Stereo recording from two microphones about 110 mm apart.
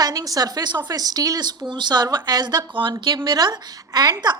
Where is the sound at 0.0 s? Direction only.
35° right (ahead or behind).